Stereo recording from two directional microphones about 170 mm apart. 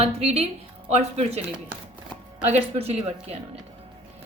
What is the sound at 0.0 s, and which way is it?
A woman's voice, 35° right (ahead or behind).